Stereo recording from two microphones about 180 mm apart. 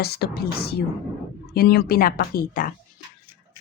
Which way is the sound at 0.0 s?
60° left (ahead or behind).